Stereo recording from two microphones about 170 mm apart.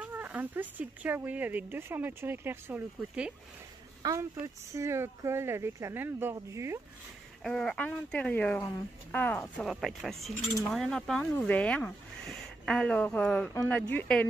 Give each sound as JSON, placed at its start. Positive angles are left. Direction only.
{"t": 0.0, "sound": "speech", "side_deg": -10}
{"t": 7.4, "sound": "speech", "side_deg": 5}
{"t": 9.7, "sound": "speech", "side_deg": 0}